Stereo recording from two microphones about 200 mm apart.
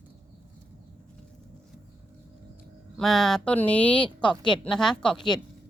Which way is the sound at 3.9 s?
25° left (ahead or behind).